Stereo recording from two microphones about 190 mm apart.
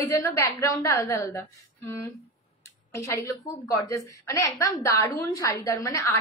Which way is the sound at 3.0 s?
15° left (ahead or behind).